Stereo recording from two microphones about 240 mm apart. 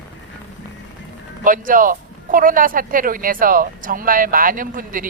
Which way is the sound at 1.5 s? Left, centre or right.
Right.